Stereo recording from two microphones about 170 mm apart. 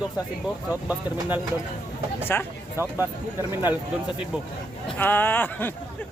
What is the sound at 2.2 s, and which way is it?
Speech, 15° left (ahead or behind).